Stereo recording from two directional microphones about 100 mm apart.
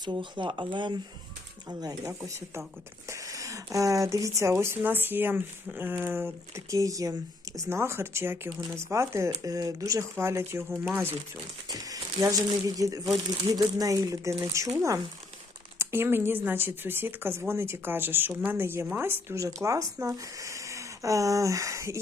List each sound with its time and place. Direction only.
0.0 s speech: 50° right (ahead or behind)
1.6 s speech: 40° right (ahead or behind); by 11.1 s 15° right (ahead or behind)
11.7 s speech: 35° right (ahead or behind)
15.8 s speech: 25° right (ahead or behind)